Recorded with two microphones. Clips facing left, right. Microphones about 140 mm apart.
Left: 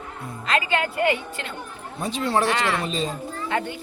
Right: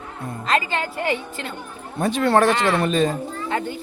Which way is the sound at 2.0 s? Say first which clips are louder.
Right 6 dB; 55° right (ahead or behind).